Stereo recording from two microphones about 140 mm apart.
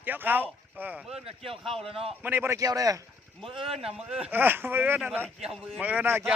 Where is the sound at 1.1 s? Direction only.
45° right (ahead or behind).